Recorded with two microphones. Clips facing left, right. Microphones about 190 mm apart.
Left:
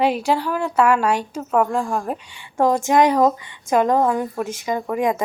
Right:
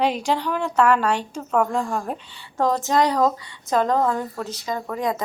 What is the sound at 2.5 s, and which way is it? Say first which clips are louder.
Speech: left 4 dB; 15° left (ahead or behind).